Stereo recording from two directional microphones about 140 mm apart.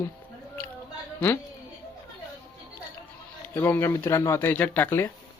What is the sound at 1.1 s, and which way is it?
Speech, 20° left (ahead or behind).